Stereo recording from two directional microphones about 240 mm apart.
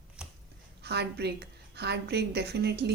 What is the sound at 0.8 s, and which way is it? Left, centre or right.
Speech, right.